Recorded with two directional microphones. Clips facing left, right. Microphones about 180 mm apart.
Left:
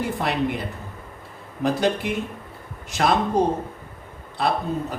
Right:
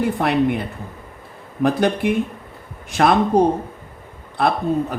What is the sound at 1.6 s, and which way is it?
Speech, 55° right (ahead or behind).